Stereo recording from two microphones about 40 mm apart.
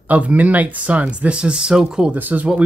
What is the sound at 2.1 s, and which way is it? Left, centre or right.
Speech, right.